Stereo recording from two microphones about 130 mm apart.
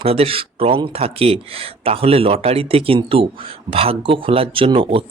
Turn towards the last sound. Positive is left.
turn(degrees=-45)  # may be behind; listen again after turning